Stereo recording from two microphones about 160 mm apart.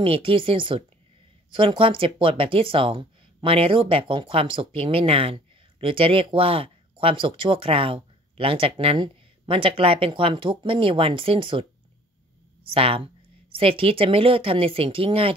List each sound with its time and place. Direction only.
0.0 s speech: 35° right (ahead or behind)
12.7 s speech: 35° right (ahead or behind)